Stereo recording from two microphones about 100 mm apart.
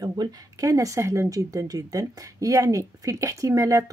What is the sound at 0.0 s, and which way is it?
Speech, 45° right (ahead or behind).